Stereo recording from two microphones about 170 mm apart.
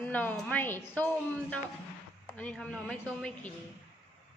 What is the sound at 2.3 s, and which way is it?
A woman's voice, 5° left (ahead or behind).